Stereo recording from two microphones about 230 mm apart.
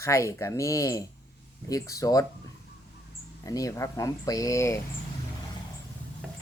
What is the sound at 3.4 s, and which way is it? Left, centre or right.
Speech, centre.